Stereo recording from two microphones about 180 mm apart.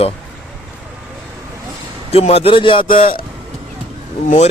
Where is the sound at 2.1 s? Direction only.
35° left (ahead or behind).